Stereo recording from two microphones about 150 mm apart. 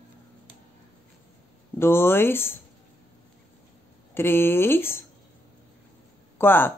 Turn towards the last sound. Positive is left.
turn(degrees=15)  # may be behind; listen again after turning